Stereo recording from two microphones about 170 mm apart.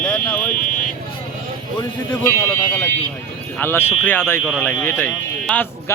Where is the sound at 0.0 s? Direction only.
10° left (ahead or behind).